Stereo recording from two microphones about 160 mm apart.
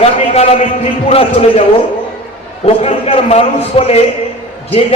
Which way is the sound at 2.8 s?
40° left (ahead or behind).